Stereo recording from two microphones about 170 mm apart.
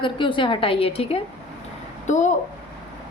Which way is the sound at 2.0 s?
45° left (ahead or behind).